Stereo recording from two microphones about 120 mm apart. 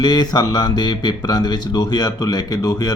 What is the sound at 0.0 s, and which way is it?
Speech, 35° left (ahead or behind).